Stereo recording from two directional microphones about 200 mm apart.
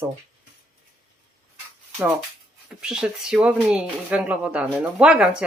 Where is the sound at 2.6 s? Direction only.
5° right (ahead or behind).